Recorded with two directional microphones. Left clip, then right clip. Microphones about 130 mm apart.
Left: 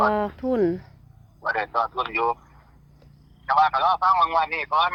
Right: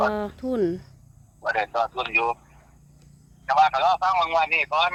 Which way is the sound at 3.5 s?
15° right (ahead or behind).